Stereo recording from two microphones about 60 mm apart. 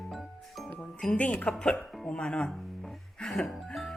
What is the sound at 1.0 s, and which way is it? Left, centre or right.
A woman's voice, centre.